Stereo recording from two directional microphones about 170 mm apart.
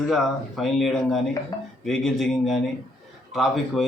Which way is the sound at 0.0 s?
Centre (ahead or behind).